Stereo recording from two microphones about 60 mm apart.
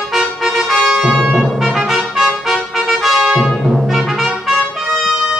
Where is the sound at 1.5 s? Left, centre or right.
Centre.